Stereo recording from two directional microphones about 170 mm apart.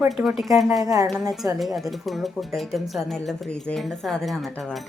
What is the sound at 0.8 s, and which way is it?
Speech, 20° right (ahead or behind).